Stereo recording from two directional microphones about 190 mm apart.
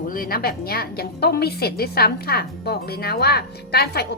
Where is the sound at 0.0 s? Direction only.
50° left (ahead or behind).